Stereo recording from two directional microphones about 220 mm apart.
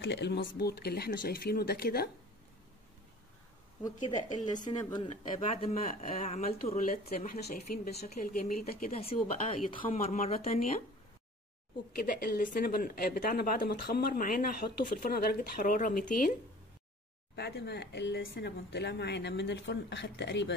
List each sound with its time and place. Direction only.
0.0 s speech: 50° left (ahead or behind)
3.8 s speech: 20° left (ahead or behind)
7.2 s speech: 45° left (ahead or behind)
9.1 s speech: 25° left (ahead or behind)
9.9 s speech: 35° left (ahead or behind)
11.9 s speech: 40° left (ahead or behind)
17.4 s speech: 50° left (ahead or behind)